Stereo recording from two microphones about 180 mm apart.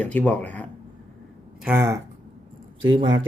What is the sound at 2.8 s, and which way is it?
Speech, 25° right (ahead or behind).